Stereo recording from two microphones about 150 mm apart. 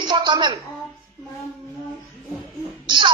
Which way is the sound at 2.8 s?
30° right (ahead or behind).